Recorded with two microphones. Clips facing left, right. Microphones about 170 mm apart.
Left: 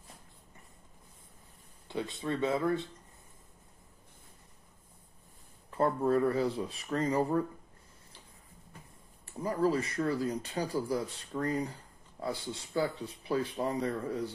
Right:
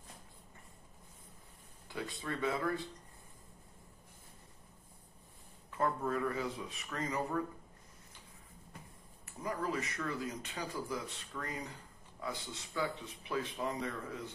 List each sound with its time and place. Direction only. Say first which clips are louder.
1.9 s speech: left 6 dB; 25° left (ahead or behind)
5.7 s speech: left 7 dB; 35° left (ahead or behind)
9.2 s speech: left 9 dB; 30° left (ahead or behind)